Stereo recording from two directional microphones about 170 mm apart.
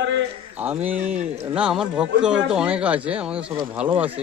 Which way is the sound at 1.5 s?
5° right (ahead or behind).